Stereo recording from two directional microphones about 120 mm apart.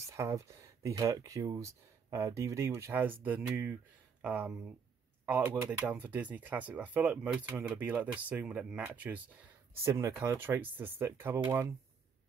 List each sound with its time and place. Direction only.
0.0 s speech: 25° right (ahead or behind)